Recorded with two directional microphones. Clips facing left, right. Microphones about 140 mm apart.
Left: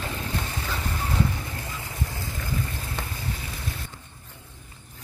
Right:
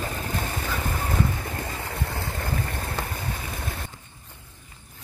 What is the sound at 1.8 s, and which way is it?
Stream, 70° right (ahead or behind).